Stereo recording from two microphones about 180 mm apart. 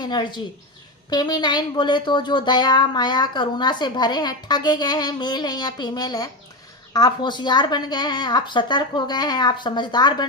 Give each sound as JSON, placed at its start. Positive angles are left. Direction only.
{"t": 0.0, "sound": "speech", "side_deg": 25}